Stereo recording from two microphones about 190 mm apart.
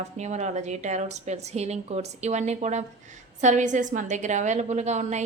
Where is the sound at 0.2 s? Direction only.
35° right (ahead or behind).